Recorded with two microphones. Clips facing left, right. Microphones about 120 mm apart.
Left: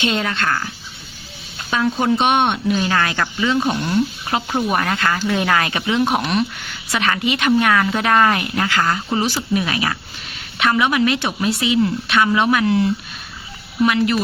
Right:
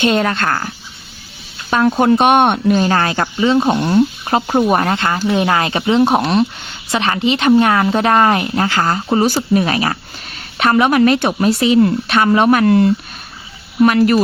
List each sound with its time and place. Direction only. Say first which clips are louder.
0.0 s speech: right 6 dB; 50° right (ahead or behind)
1.9 s speech: right 6 dB; 55° right (ahead or behind)